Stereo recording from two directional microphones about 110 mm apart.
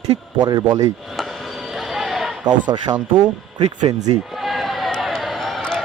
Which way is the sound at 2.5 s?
40° right (ahead or behind).